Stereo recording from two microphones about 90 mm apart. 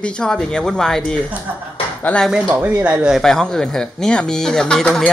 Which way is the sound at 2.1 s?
20° left (ahead or behind).